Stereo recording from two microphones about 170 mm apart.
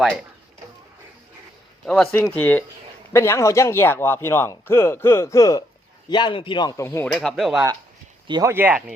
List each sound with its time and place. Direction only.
1.8 s speech: 5° left (ahead or behind); by 6.8 s 25° left (ahead or behind)
6.8 s speech: 10° left (ahead or behind)
8.3 s speech: 20° right (ahead or behind)